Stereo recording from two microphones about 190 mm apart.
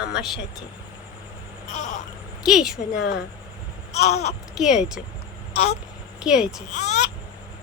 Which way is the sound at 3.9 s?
35° left (ahead or behind).